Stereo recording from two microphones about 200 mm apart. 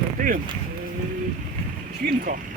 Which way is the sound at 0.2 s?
40° right (ahead or behind).